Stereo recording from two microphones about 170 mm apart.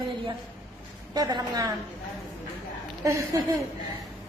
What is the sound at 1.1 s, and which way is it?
Speech, 20° right (ahead or behind).